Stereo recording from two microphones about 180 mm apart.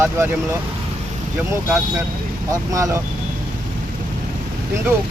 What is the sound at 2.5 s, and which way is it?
Speech, 15° right (ahead or behind).